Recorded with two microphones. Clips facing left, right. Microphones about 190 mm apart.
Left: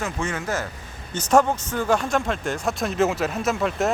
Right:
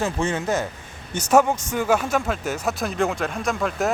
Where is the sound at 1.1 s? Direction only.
10° right (ahead or behind).